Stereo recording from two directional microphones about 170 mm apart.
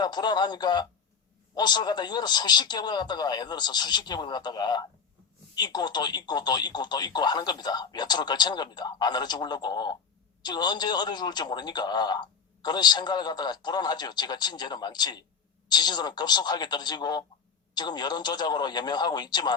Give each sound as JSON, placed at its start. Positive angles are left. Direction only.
{"t": 0.0, "sound": "a man's voice", "side_deg": 25}